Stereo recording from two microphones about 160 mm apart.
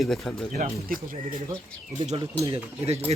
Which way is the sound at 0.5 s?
60° right (ahead or behind).